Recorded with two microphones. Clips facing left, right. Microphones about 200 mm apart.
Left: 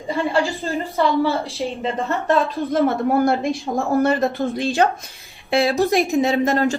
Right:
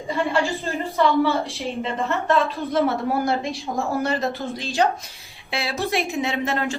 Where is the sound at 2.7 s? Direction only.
50° left (ahead or behind).